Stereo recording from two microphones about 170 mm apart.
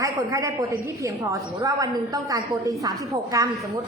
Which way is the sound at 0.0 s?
20° right (ahead or behind).